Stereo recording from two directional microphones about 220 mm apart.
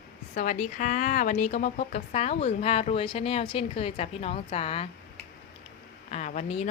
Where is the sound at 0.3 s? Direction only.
35° left (ahead or behind).